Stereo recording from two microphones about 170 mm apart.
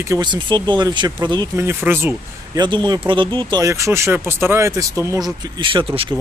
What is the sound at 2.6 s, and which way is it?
Speech, 25° right (ahead or behind).